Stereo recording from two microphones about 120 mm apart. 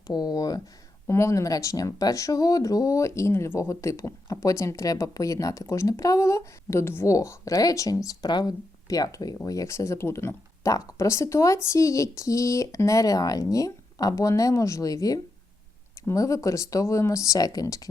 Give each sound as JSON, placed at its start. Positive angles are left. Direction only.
{"t": 0.1, "sound": "speech", "side_deg": 35}